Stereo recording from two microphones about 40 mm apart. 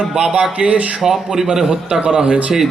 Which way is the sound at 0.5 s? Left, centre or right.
Right.